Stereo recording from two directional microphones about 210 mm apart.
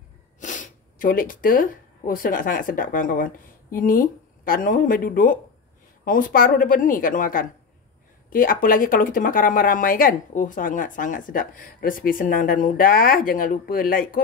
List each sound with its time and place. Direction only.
0.4 s speech: 35° left (ahead or behind)